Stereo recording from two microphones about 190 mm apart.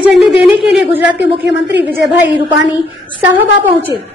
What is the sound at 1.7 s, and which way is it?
Speech, 65° right (ahead or behind).